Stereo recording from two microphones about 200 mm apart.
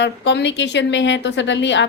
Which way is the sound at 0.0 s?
60° left (ahead or behind).